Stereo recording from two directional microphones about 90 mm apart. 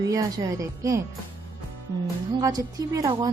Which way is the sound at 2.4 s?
40° right (ahead or behind).